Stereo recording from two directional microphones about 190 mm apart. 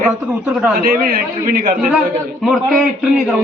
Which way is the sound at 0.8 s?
50° right (ahead or behind).